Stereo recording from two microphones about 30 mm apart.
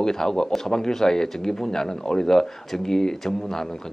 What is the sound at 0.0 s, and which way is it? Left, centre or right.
Speech, centre.